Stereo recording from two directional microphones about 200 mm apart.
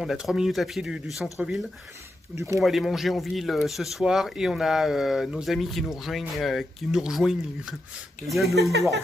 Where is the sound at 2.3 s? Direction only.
15° right (ahead or behind).